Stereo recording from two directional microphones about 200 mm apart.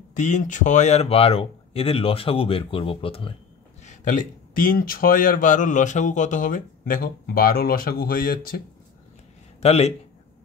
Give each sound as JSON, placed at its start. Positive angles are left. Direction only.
{"t": 0.1, "sound": "speech", "side_deg": 40}
{"t": 3.8, "sound": "speech", "side_deg": 40}
{"t": 9.6, "sound": "speech", "side_deg": 30}